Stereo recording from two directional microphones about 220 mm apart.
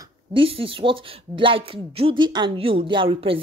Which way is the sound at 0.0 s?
25° right (ahead or behind).